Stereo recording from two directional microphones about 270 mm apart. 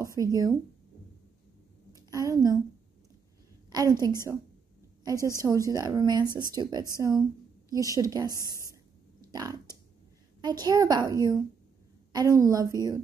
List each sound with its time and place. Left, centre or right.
0.0 s speech: centre
1.9 s a sound: centre
3.7 s a woman's voice: centre